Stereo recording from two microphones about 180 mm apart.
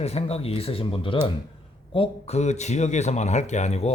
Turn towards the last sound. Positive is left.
turn(degrees=40)  # may be behind; listen again after turning